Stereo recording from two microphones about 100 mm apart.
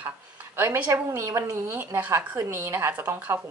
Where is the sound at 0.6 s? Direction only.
20° right (ahead or behind).